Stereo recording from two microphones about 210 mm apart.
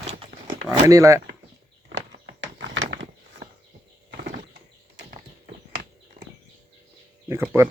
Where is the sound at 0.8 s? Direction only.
15° right (ahead or behind).